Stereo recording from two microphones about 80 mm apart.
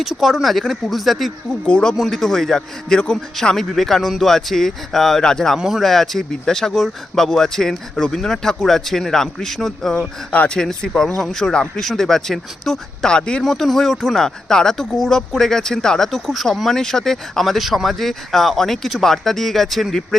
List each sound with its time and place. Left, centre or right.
0.0 s speech: centre
1.6 s speech: centre
5.5 s speech: centre
10.3 s speech: centre
10.6 s speech: centre